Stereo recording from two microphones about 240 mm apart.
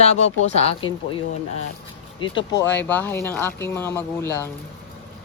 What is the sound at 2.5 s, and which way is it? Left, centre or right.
Speech, centre.